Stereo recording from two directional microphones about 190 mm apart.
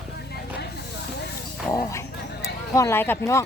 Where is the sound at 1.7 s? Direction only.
15° left (ahead or behind).